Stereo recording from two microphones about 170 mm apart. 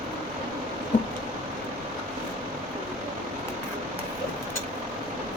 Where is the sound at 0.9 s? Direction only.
45° left (ahead or behind).